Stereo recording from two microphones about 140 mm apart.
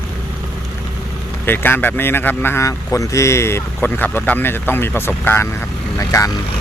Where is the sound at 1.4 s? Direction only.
15° left (ahead or behind).